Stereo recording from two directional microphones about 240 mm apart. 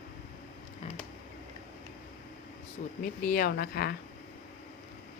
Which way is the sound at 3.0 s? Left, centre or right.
Left.